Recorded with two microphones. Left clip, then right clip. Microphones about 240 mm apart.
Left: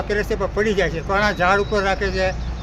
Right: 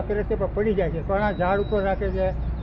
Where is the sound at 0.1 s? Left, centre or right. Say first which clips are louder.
Left 3 dB; left.